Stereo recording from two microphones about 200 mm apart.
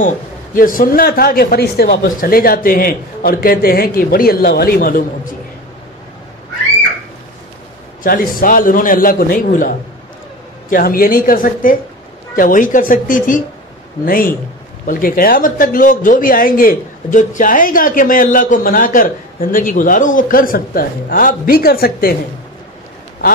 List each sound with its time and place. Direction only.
0.6 s a man's voice: 45° left (ahead or behind)
8.0 s a man's voice: 45° left (ahead or behind)